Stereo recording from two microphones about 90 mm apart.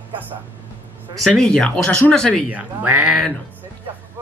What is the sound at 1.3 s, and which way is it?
Speech, 10° left (ahead or behind).